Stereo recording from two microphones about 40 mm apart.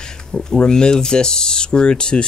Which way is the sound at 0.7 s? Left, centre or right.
Centre.